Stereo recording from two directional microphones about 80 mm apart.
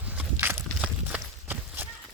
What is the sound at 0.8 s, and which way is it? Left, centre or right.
Run, centre.